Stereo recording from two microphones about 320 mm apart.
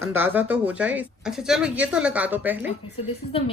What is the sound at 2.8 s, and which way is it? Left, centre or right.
Speech, centre.